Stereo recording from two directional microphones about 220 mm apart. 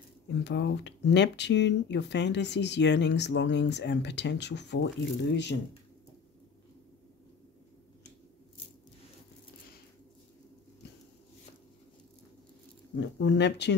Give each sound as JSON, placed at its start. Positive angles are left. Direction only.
{"t": 0.3, "sound": "speech", "side_deg": 55}
{"t": 12.9, "sound": "speech", "side_deg": 55}